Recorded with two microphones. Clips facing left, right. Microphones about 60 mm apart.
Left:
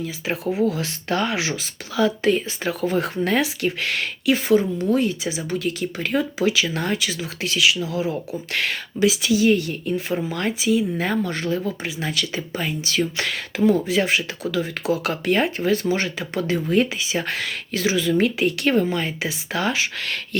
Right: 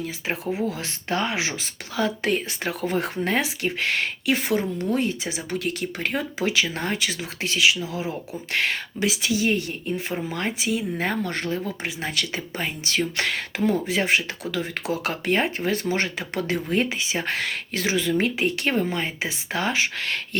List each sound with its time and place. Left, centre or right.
0.7 s speech: right
2.0 s speech: right